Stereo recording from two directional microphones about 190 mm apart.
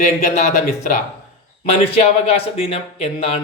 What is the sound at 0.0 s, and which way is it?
Speech, 40° left (ahead or behind).